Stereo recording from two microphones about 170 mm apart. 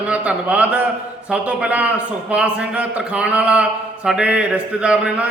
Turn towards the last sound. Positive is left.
turn(degrees=-5)  # may be behind; listen again after turning